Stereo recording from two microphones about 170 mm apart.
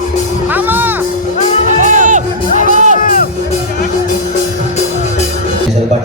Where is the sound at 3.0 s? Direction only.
55° left (ahead or behind).